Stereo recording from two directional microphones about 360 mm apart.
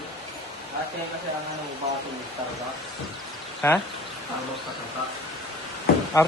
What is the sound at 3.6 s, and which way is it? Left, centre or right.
Speech, centre.